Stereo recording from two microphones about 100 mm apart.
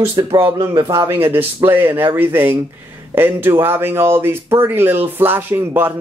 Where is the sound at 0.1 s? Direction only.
55° right (ahead or behind).